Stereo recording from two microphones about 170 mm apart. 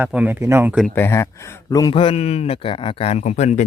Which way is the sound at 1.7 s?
25° left (ahead or behind).